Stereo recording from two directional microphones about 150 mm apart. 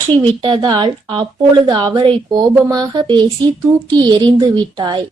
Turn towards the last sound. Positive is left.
turn(degrees=-30)  # may be behind; listen again after turning